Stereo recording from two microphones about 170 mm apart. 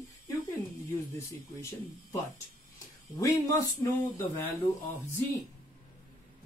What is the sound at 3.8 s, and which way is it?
Speech, 15° left (ahead or behind).